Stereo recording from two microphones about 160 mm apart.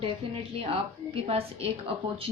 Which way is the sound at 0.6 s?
35° right (ahead or behind).